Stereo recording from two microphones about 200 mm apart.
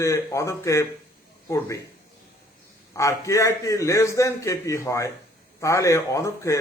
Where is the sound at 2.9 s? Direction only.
15° left (ahead or behind).